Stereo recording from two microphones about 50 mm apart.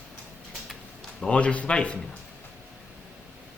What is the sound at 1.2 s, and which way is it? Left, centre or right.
Speech, left.